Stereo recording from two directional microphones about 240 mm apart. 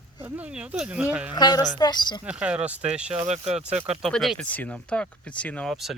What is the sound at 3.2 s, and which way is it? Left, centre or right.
Speech, right.